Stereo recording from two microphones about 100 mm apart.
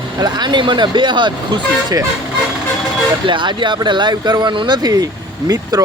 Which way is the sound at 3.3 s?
50° right (ahead or behind).